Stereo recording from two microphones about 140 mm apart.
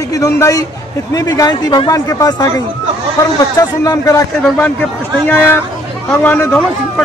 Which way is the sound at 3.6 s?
25° left (ahead or behind).